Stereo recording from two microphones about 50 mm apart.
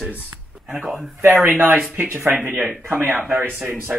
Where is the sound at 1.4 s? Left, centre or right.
Right.